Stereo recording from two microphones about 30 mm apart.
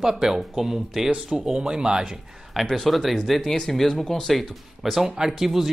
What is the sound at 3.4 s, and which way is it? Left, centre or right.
Speech, centre.